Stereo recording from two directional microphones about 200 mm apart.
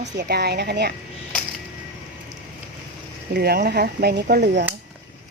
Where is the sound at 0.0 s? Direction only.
55° right (ahead or behind).